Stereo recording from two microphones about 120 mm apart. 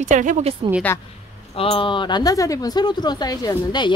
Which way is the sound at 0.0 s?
90° right.